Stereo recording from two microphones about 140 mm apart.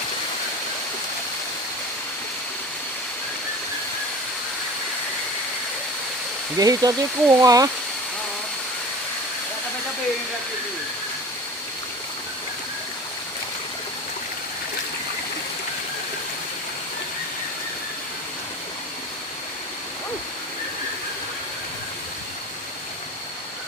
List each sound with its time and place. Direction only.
6.6 s speech: 25° right (ahead or behind)